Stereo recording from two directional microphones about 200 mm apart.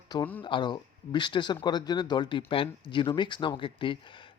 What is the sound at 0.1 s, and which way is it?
Speech, 20° left (ahead or behind).